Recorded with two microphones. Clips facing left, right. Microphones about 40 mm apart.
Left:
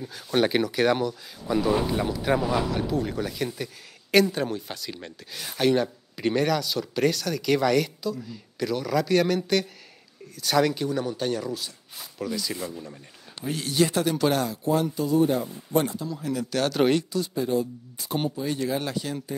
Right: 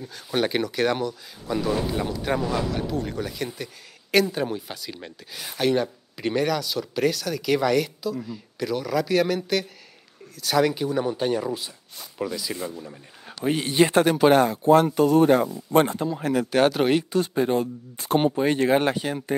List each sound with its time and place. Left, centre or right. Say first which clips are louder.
0.0 s speech: left 1 dB; centre
12.3 s speech: even; centre
13.4 s speech: right 4 dB; right
14.7 s speech: right 6 dB; right
15.7 s speech: right 4 dB; right
16.7 s speech: even; centre
17.1 s speech: right 4 dB; right